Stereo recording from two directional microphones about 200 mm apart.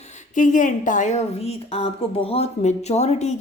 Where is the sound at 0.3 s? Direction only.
40° left (ahead or behind).